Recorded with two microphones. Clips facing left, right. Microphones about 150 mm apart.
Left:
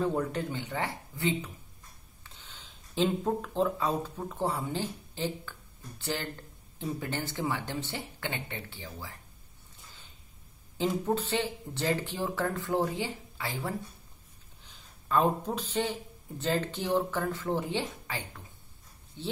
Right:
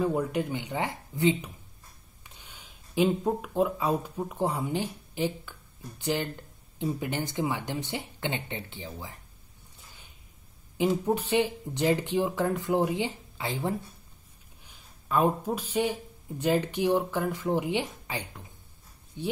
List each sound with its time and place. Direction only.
0.0 s speech: 10° right (ahead or behind)
9.8 s a sound: 15° right (ahead or behind)
10.8 s speech: 15° right (ahead or behind)